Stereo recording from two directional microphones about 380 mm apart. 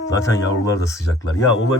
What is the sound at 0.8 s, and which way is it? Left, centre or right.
Speech, centre.